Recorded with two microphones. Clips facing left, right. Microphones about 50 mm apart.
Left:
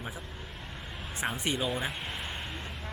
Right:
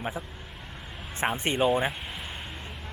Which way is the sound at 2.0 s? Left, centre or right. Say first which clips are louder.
Left 1 dB; centre.